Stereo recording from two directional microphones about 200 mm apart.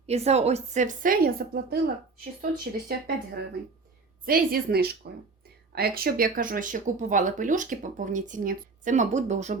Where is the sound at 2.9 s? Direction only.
50° right (ahead or behind).